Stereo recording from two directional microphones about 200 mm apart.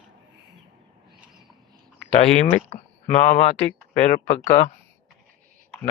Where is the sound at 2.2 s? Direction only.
35° left (ahead or behind).